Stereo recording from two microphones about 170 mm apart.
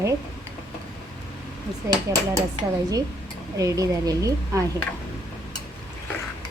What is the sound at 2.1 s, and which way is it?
Speech, 20° right (ahead or behind).